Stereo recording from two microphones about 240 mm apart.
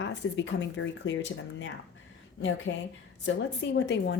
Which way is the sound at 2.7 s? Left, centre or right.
Left.